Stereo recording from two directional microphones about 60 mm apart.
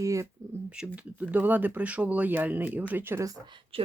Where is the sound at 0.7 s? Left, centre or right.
Centre.